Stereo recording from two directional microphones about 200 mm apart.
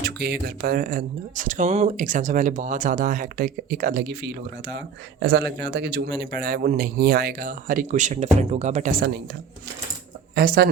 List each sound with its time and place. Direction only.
0.0 s speech: 50° right (ahead or behind)
10.3 s speech: 50° right (ahead or behind)